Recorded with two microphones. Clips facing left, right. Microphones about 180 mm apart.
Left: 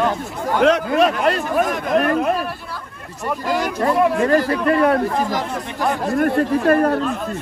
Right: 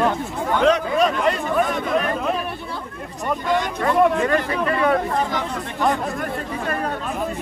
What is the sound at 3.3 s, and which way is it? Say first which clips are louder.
Speech: left 1 dB; 5° left (ahead or behind).